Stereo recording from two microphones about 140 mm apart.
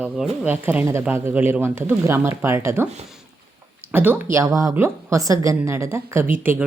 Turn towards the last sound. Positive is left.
turn(degrees=-15)  # may be behind; listen again after turning